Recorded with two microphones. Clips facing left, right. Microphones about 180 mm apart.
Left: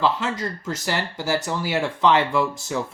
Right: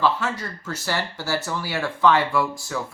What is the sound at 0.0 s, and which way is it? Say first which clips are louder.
Speech: even; 20° left (ahead or behind).